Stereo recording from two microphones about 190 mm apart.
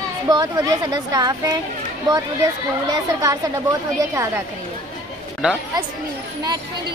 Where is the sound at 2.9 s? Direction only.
15° right (ahead or behind).